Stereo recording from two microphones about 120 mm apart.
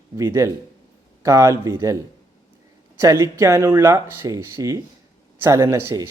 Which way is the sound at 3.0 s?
25° right (ahead or behind).